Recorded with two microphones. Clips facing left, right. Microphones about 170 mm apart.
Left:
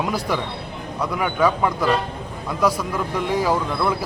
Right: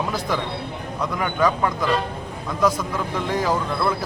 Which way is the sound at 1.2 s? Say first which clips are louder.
Left 1 dB; 10° left (ahead or behind).